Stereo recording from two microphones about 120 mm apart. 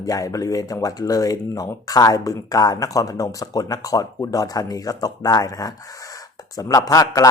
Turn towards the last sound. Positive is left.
turn(degrees=30)  # may be behind; listen again after turning